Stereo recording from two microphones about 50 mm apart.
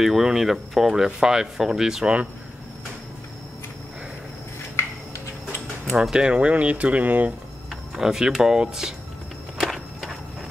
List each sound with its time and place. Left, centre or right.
0.0 s speech: centre
4.7 s a sound: left
5.9 s speech: centre; by 7.3 s right
7.9 s speech: centre
9.6 s walk: centre